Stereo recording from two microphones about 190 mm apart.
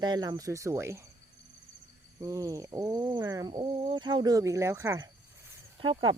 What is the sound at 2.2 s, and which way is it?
Speech, 15° right (ahead or behind).